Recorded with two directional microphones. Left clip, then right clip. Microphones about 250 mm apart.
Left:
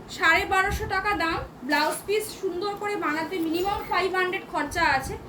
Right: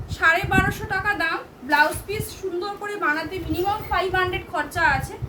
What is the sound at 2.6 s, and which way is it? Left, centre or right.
A woman's voice, centre.